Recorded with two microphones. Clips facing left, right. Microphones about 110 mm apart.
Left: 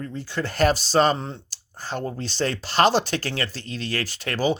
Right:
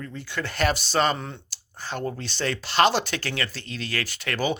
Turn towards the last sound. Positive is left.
turn(degrees=35)  # may be behind; listen again after turning